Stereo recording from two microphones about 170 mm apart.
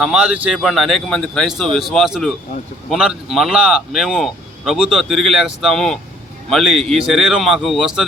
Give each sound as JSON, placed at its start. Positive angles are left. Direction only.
{"t": 0.0, "sound": "a man's voice", "side_deg": -5}